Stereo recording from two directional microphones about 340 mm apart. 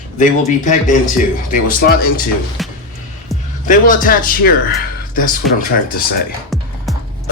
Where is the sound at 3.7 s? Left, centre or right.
Left.